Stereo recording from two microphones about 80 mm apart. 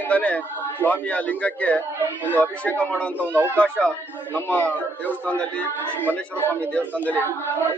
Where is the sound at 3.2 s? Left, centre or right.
Right.